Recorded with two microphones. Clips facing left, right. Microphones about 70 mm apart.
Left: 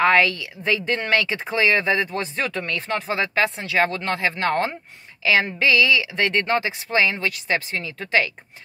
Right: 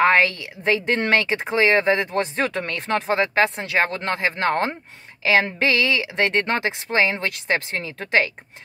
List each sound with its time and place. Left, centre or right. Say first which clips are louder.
0.0 s speech: even; right
5.7 s speech: left 2 dB; right